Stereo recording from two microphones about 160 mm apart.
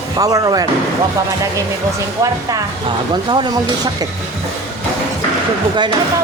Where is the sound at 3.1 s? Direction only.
30° right (ahead or behind).